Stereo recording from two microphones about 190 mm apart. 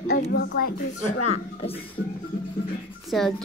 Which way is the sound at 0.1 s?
55° left (ahead or behind).